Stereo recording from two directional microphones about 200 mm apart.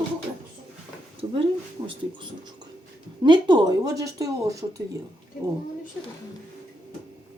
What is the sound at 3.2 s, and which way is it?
Speech, 20° right (ahead or behind).